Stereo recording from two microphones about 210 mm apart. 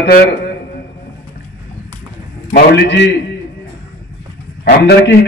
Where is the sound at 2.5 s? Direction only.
50° left (ahead or behind).